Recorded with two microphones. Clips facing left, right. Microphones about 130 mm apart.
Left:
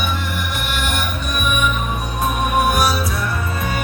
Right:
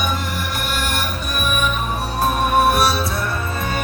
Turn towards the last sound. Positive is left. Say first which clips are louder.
# right 1 dB
turn(degrees=-30)  # may be behind; listen again after turning